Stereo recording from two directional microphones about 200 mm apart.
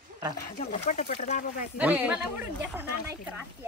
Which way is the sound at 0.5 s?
35° left (ahead or behind).